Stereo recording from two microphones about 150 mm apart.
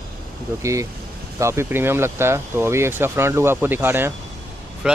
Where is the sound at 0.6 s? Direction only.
20° right (ahead or behind).